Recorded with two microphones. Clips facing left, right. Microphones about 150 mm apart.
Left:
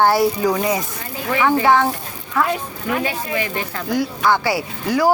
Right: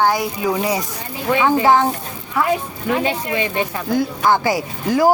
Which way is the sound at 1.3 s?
20° right (ahead or behind).